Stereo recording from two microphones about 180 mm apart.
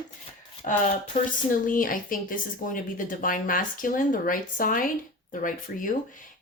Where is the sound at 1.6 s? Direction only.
50° left (ahead or behind).